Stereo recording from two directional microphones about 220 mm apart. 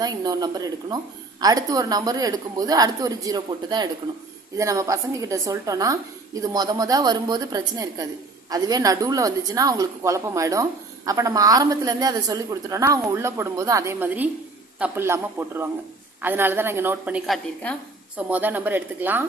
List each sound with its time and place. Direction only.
0.0 s a woman's voice: 15° right (ahead or behind)